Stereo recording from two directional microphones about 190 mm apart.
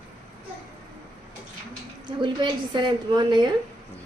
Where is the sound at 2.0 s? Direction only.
25° right (ahead or behind).